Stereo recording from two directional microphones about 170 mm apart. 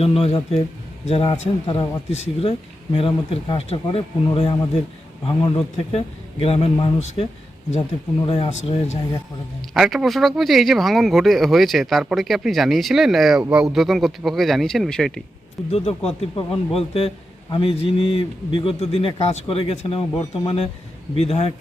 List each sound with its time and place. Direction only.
0.0 s a man's voice: 35° left (ahead or behind)
9.7 s speech: centre (ahead or behind)
15.7 s a man's voice: 35° left (ahead or behind)